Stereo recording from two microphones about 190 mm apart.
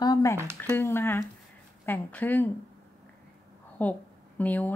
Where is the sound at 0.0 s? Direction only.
20° left (ahead or behind).